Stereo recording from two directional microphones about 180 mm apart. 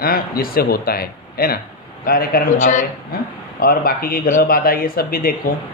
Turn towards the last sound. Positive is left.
turn(degrees=55)  # may be behind; listen again after turning